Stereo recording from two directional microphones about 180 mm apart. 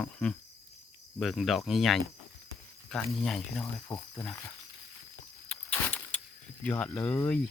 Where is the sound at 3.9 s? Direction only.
20° left (ahead or behind).